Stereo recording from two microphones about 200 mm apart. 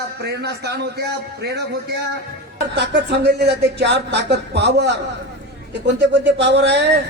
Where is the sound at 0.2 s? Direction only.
55° right (ahead or behind).